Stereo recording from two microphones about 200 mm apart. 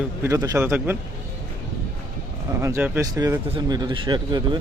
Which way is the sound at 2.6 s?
15° right (ahead or behind).